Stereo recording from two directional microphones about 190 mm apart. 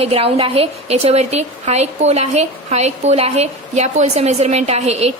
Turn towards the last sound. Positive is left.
turn(degrees=-35)  # may be behind; listen again after turning